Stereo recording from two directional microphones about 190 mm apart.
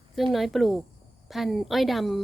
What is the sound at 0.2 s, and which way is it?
Speech, centre (ahead or behind).